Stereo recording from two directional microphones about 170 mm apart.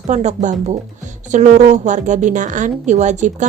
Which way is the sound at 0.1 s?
40° right (ahead or behind).